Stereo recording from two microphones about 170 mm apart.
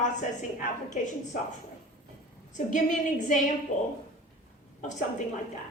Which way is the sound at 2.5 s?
45° left (ahead or behind).